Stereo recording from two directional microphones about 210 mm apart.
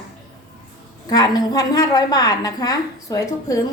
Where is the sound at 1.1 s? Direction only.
20° left (ahead or behind).